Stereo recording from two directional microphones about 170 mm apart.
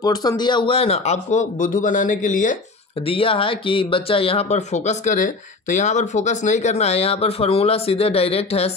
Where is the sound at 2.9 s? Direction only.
35° left (ahead or behind).